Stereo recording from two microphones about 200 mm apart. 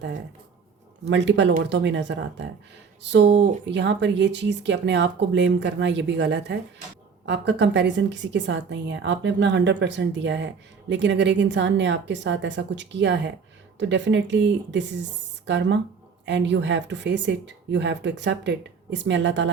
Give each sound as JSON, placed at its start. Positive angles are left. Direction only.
{"t": 1.0, "sound": "a woman's voice", "side_deg": -60}